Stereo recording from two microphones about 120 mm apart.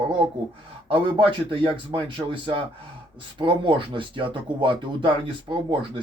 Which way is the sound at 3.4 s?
40° right (ahead or behind).